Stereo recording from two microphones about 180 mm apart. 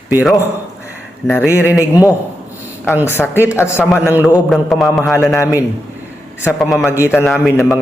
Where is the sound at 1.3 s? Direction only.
10° left (ahead or behind).